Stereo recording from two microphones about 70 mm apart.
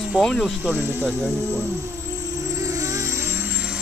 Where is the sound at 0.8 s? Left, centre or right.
Right.